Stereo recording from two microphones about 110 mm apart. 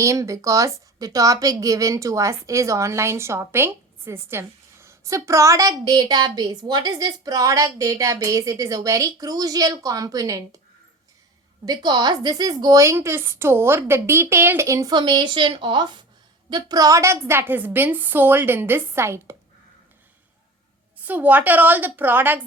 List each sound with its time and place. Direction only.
0.0 s a woman's voice: 30° right (ahead or behind)
11.6 s a woman's voice: 40° right (ahead or behind)
12.8 s a woman's voice: 25° right (ahead or behind)
14.9 s a woman's voice: 45° right (ahead or behind); by 19.4 s 25° right (ahead or behind)
21.0 s a woman's voice: 15° right (ahead or behind)